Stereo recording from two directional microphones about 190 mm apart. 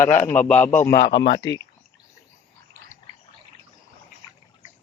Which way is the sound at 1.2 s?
60° left (ahead or behind).